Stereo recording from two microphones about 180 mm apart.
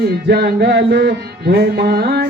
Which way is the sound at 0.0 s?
60° right (ahead or behind).